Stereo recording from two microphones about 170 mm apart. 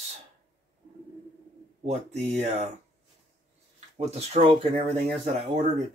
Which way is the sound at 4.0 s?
40° right (ahead or behind).